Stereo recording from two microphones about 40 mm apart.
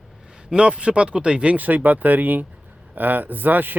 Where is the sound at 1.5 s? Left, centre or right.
Right.